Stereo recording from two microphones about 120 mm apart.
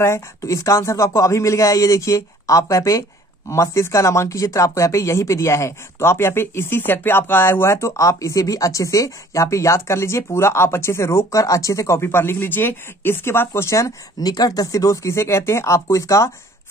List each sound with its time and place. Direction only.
0.0 s speech: 25° left (ahead or behind)